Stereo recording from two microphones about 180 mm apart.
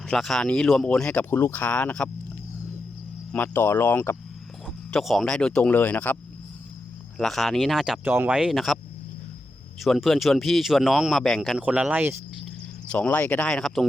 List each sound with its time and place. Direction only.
0.1 s speech: centre (ahead or behind)
3.3 s speech: 10° left (ahead or behind)
4.6 s speech: centre (ahead or behind)
7.2 s speech: centre (ahead or behind)
9.8 s speech: centre (ahead or behind)
12.9 s speech: 10° left (ahead or behind)